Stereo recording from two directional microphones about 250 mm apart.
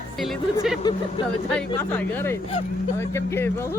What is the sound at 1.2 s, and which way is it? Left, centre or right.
Speech, centre.